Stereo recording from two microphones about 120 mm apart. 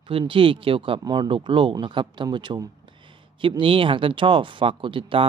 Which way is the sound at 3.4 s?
45° right (ahead or behind).